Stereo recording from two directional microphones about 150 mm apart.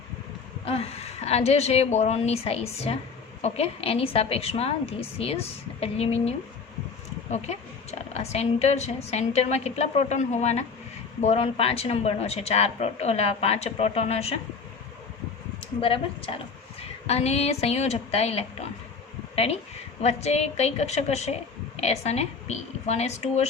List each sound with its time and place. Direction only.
0.6 s a woman's voice: 40° left (ahead or behind)
15.8 s a woman's voice: 35° left (ahead or behind)
20.0 s a woman's voice: 45° left (ahead or behind)